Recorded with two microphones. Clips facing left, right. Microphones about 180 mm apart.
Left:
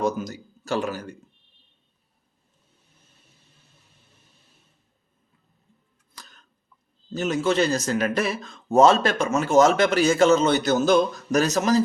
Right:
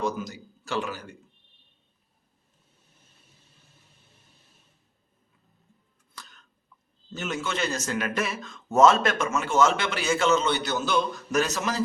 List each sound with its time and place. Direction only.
0.0 s speech: 40° left (ahead or behind)
7.1 s speech: 35° left (ahead or behind)